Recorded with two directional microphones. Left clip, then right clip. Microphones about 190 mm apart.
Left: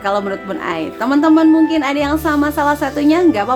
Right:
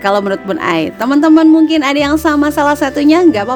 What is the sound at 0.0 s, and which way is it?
Speech, 45° right (ahead or behind).